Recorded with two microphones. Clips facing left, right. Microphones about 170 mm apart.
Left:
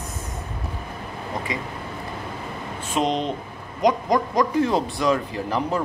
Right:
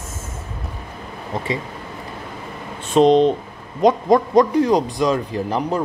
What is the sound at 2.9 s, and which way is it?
Speech, 20° right (ahead or behind).